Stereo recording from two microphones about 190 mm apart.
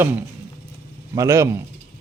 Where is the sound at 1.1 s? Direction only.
15° right (ahead or behind).